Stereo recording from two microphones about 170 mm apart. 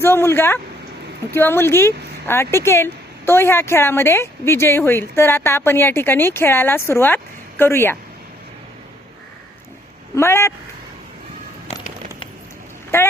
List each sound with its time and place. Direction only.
0.0 s speech: 15° left (ahead or behind)
10.2 s speech: 15° left (ahead or behind)
12.9 s speech: 15° left (ahead or behind)